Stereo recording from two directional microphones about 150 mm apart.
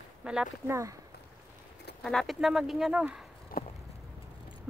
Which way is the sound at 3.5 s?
80° left.